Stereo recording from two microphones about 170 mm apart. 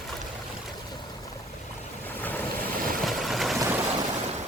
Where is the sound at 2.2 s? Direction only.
10° left (ahead or behind).